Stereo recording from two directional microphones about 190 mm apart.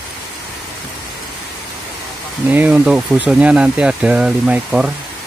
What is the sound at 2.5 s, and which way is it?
Speech, 5° right (ahead or behind).